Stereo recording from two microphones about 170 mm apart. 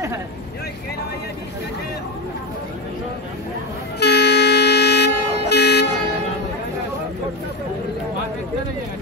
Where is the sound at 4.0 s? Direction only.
75° left (ahead or behind).